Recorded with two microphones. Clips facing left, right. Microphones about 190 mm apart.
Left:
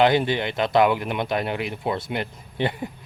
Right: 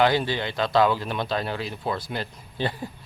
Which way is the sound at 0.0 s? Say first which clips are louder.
Left 3 dB; 20° left (ahead or behind).